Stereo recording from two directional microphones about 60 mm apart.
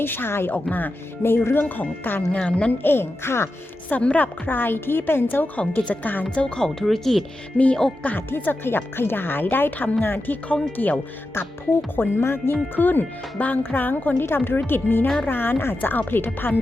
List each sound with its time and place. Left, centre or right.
0.0 s speech: left
1.6 s speech: left
2.8 s speech: left
3.8 s speech: left
5.5 s speech: left
6.2 s speech: centre
7.6 s speech: left
11.9 s speech: left